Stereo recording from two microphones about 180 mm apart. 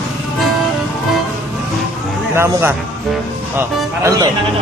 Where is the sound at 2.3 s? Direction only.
10° right (ahead or behind).